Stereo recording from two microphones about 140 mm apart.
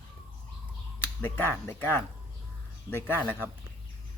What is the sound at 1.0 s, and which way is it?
Speech, 15° left (ahead or behind).